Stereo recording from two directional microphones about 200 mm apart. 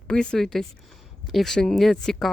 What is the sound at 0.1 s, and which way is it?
A woman's voice, 5° left (ahead or behind).